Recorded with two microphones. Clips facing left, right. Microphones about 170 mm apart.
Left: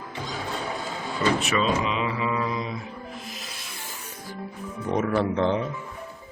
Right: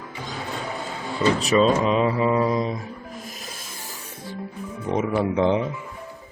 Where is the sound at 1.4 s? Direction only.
35° right (ahead or behind).